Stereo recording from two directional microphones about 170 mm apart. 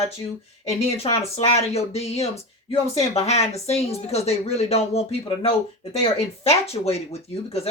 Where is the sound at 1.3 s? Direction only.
35° left (ahead or behind).